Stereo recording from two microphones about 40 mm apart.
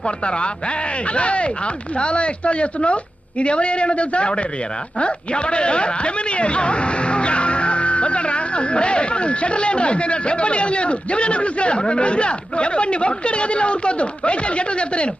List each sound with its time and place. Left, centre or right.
0.0 s a woman's voice: left